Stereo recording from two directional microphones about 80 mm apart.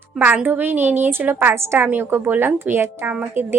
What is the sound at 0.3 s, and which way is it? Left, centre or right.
A woman's voice, centre.